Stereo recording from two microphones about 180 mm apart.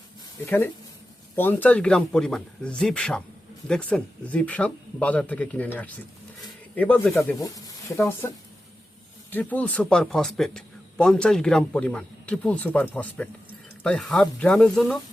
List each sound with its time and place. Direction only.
0.4 s a man's voice: 10° left (ahead or behind)
9.3 s a man's voice: 10° left (ahead or behind)